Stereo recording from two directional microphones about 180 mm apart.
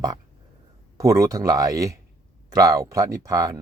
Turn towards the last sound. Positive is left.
turn(degrees=-20)  # may be behind; listen again after turning